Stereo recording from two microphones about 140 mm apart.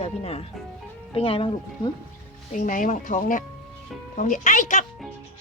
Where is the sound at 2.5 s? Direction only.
65° left (ahead or behind).